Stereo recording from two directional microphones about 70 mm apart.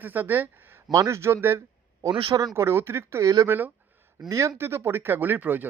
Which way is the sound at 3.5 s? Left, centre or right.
Right.